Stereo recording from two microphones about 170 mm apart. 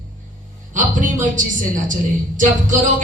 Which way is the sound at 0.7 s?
50° right (ahead or behind).